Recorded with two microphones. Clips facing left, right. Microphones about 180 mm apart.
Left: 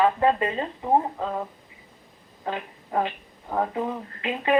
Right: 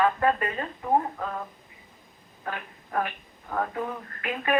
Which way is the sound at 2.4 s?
20° left (ahead or behind).